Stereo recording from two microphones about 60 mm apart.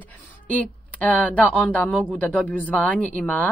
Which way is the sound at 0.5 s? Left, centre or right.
Left.